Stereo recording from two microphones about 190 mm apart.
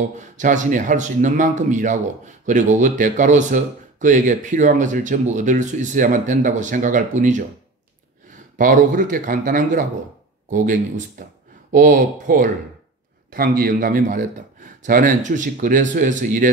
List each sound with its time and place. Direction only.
0.4 s speech: 40° right (ahead or behind)
8.5 s speech: 45° right (ahead or behind)